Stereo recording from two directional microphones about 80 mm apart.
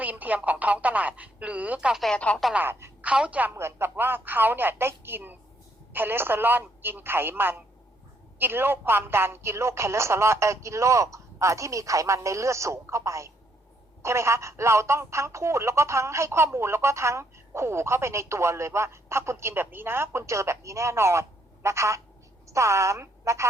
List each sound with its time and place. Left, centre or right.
0.0 s speech: centre
2.1 s speech: centre
3.0 s a woman's voice: centre
3.5 s a woman's voice: right